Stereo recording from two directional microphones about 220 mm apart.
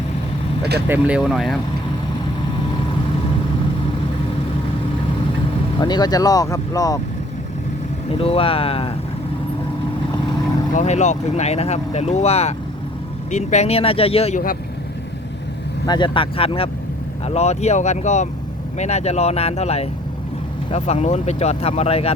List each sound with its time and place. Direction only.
0.9 s speech: 5° right (ahead or behind)
5.8 s speech: 20° left (ahead or behind)
8.1 s speech: 25° left (ahead or behind)
10.8 s speech: 30° left (ahead or behind)
15.9 s speech: 20° left (ahead or behind)